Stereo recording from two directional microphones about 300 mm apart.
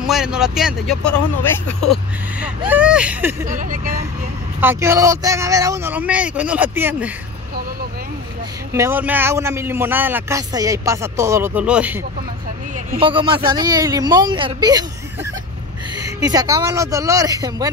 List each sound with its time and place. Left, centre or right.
0.0 s speech: centre
3.4 s speech: right
4.6 s a man's voice: centre
8.7 s a man's voice: centre
12.7 s a man's voice: right